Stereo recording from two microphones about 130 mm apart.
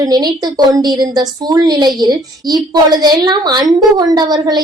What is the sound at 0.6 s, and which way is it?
A woman's voice, 30° right (ahead or behind).